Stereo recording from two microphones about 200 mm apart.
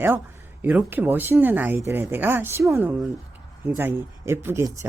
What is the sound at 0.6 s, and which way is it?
Speech, 10° right (ahead or behind).